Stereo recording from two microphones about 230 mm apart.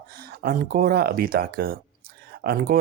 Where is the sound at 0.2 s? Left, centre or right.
Right.